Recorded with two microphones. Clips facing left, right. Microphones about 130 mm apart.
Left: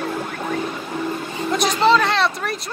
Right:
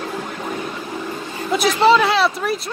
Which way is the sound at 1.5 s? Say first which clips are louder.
Right 2 dB; 5° right (ahead or behind).